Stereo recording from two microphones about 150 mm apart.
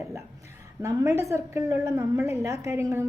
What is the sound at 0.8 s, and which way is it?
A woman's voice, 20° right (ahead or behind).